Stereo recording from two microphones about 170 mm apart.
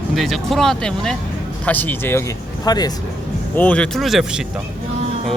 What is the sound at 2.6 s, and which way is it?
Speech, 25° left (ahead or behind).